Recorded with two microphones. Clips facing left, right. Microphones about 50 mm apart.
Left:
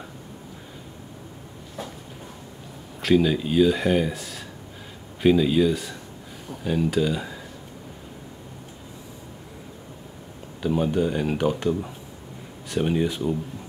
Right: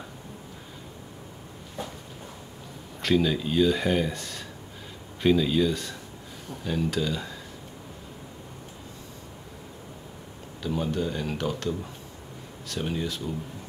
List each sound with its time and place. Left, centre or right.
3.0 s speech: centre
10.6 s speech: centre